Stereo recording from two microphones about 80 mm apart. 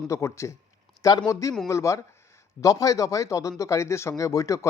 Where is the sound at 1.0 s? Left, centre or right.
Left.